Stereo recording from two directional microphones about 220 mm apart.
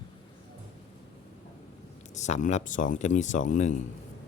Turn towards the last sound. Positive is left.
turn(degrees=35)  # may be behind; listen again after turning